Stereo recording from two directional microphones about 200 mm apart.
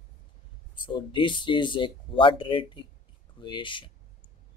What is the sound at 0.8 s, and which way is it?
Speech, 25° left (ahead or behind).